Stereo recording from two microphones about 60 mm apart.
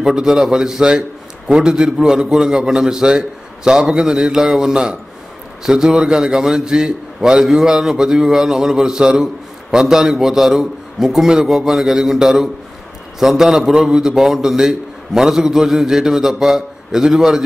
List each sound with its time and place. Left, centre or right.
0.0 s a man's voice: centre